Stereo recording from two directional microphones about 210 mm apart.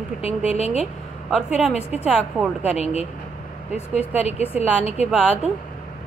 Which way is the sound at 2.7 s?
30° left (ahead or behind).